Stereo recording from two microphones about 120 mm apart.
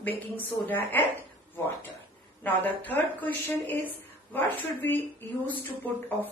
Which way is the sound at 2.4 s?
15° left (ahead or behind).